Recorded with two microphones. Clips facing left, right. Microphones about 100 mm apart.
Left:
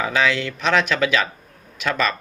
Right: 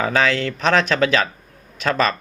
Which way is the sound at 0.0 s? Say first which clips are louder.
Right 2 dB; 40° right (ahead or behind).